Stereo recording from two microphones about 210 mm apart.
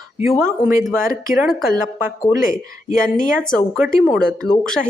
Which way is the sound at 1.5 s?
15° right (ahead or behind).